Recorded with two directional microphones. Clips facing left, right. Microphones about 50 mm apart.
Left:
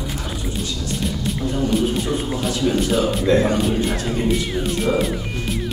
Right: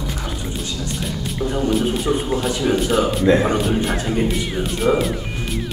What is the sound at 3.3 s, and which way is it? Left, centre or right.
Speech, centre.